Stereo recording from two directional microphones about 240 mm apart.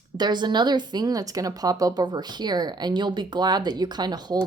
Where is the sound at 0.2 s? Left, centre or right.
Centre.